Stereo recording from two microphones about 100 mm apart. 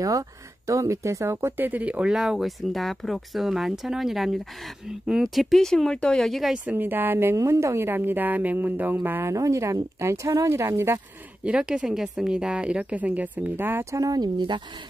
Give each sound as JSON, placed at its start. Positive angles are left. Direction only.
{"t": 0.0, "sound": "speech", "side_deg": -35}
{"t": 6.5, "sound": "a woman's voice", "side_deg": -15}
{"t": 9.3, "sound": "a woman's voice", "side_deg": -30}
{"t": 11.4, "sound": "speech", "side_deg": -10}